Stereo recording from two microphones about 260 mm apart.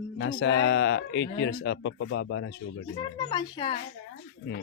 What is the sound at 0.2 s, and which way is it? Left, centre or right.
Speech, left.